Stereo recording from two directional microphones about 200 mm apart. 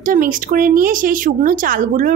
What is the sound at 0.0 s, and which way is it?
Speech, 45° right (ahead or behind).